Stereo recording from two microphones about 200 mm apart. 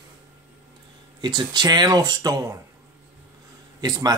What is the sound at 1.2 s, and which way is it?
Speech, 20° right (ahead or behind).